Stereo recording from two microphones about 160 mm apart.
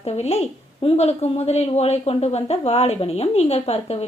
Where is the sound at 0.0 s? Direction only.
40° left (ahead or behind).